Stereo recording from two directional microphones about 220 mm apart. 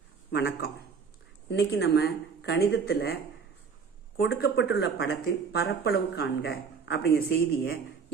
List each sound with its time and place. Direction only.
0.3 s speech: 45° left (ahead or behind)
4.2 s speech: 45° left (ahead or behind)